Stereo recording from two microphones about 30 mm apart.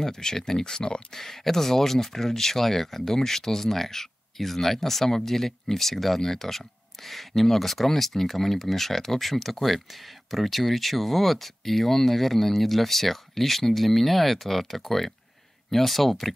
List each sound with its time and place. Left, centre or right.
0.0 s speech: left
1.1 s speech: centre